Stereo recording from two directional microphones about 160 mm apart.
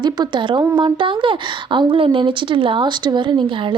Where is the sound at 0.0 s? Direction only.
30° right (ahead or behind).